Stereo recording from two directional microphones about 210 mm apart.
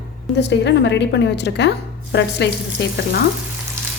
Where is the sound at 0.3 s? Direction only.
55° left (ahead or behind).